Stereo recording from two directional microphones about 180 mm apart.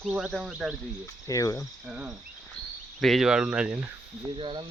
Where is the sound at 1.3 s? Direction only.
20° left (ahead or behind).